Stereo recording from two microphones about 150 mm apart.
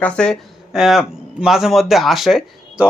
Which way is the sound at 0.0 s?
5° left (ahead or behind).